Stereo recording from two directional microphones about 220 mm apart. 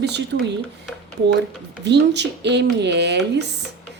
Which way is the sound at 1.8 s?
50° right (ahead or behind).